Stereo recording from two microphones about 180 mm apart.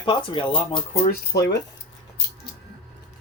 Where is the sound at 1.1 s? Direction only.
65° left (ahead or behind).